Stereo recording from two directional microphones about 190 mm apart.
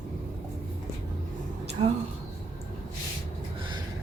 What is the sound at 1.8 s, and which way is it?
Speech, 30° right (ahead or behind).